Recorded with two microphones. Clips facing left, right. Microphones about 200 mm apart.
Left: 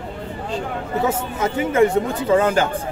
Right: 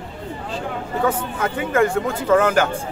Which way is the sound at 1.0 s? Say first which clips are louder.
Right 1 dB; 25° left (ahead or behind).